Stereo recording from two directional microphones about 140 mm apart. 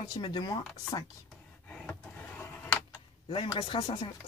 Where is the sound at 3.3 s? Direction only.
40° left (ahead or behind).